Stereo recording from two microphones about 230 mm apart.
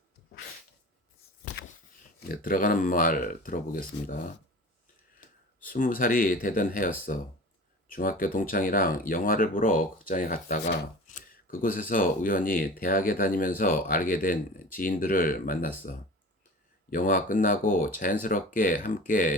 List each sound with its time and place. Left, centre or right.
2.3 s speech: left
5.5 s speech: left